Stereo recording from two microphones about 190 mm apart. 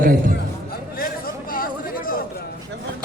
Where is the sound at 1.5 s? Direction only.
50° left (ahead or behind).